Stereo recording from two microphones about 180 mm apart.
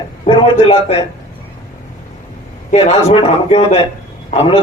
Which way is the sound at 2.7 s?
35° left (ahead or behind).